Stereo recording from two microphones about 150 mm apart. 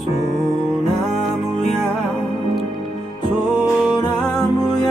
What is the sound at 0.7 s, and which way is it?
Music, centre (ahead or behind).